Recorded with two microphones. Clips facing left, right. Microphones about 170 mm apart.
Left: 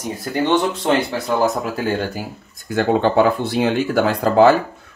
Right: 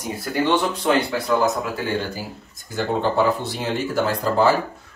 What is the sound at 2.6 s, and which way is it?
Speech, 65° left (ahead or behind).